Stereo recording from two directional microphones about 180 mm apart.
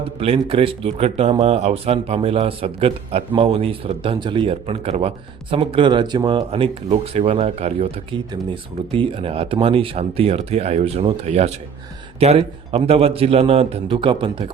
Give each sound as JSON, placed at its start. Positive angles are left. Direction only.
{"t": 0.2, "sound": "a man's voice", "side_deg": -30}